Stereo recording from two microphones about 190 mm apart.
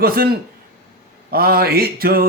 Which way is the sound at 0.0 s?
50° right (ahead or behind).